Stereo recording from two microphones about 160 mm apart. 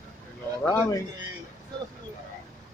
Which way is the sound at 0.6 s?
15° left (ahead or behind).